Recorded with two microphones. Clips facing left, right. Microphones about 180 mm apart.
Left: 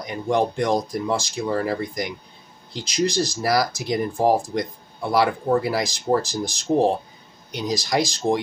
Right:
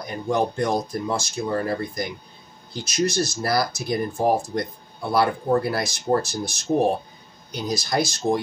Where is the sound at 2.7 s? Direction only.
90° left.